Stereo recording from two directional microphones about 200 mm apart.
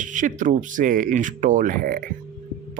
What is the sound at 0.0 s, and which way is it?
Speech, 40° right (ahead or behind).